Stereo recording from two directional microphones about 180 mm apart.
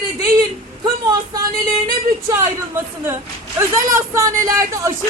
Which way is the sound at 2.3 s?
15° right (ahead or behind).